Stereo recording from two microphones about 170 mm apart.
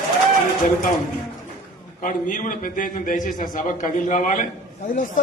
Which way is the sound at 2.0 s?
50° left (ahead or behind).